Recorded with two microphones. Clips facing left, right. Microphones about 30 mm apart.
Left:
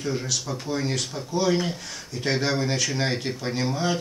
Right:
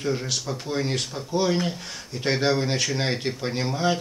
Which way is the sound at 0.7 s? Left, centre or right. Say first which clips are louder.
Right 1 dB; right.